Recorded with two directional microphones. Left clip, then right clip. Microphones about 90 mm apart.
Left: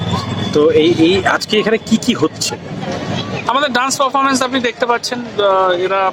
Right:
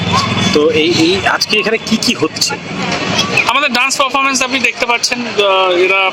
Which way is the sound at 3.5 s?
25° left (ahead or behind).